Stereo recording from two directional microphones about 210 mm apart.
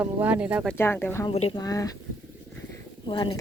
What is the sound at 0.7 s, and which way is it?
Speech, 10° left (ahead or behind).